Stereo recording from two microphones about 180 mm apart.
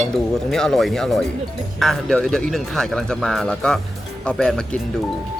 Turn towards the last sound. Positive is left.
turn(degrees=5)  # may be behind; listen again after turning